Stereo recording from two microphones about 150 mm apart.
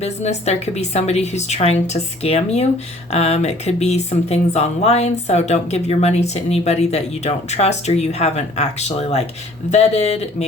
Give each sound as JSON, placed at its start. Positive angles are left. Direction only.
{"t": 0.0, "sound": "speech", "side_deg": 45}